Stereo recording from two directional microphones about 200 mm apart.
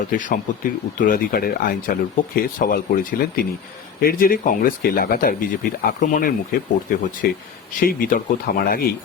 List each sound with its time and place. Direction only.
0.1 s speech: 40° left (ahead or behind)